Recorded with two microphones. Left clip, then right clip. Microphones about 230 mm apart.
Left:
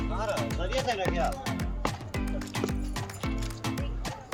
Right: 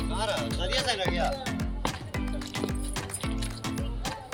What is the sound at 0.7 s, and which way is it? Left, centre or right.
Music, left.